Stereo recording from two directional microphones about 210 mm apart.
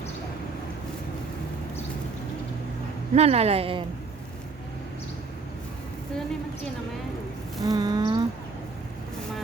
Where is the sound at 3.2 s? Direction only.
30° right (ahead or behind).